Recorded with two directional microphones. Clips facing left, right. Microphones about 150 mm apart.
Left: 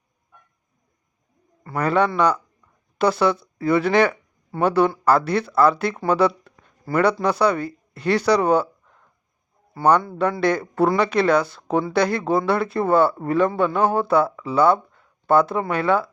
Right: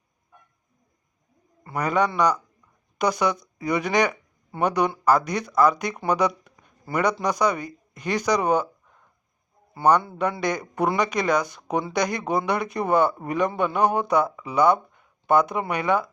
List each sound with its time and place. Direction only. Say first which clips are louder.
1.6 s speech: left 3 dB; 15° right (ahead or behind)
10.4 s speech: left 8 dB; 15° right (ahead or behind)